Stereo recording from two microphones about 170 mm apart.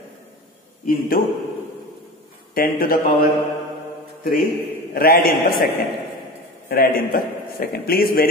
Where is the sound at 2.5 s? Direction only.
60° left (ahead or behind).